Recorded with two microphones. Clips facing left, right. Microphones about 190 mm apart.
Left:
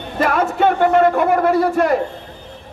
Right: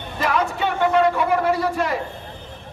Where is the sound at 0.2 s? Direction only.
50° left (ahead or behind).